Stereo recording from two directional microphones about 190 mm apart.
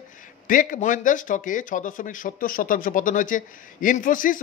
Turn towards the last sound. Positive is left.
turn(degrees=45)  # may be behind; listen again after turning